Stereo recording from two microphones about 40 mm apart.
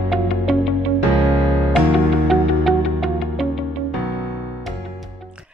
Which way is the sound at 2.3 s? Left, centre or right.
Centre.